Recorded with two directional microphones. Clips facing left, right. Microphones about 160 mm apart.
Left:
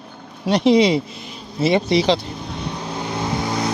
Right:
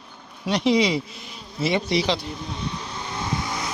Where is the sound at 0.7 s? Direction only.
25° left (ahead or behind).